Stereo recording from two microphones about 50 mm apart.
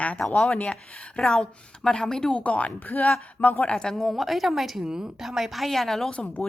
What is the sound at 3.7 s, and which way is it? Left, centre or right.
Speech, centre.